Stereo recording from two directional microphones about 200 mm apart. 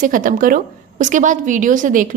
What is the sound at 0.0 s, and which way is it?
A woman's voice, 40° right (ahead or behind).